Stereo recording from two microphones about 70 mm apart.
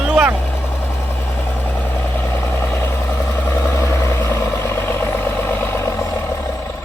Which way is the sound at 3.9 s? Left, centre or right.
Left.